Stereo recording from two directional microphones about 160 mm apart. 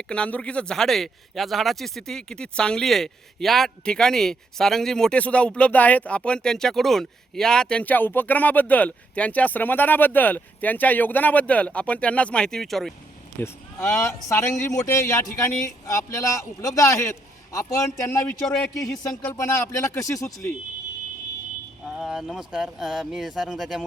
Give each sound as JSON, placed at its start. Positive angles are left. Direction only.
{"t": 0.1, "sound": "speech", "side_deg": 5}
{"t": 13.4, "sound": "speech", "side_deg": 15}
{"t": 18.4, "sound": "speech", "side_deg": 5}
{"t": 19.0, "sound": "speech", "side_deg": 20}
{"t": 21.9, "sound": "speech", "side_deg": 0}